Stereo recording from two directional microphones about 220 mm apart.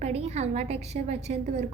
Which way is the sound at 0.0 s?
30° right (ahead or behind).